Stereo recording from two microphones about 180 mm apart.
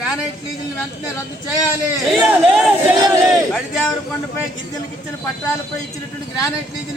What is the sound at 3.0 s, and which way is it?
Speech, 20° right (ahead or behind).